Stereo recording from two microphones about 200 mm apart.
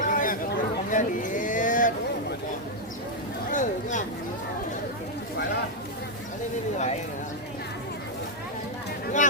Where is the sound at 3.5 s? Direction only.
40° left (ahead or behind).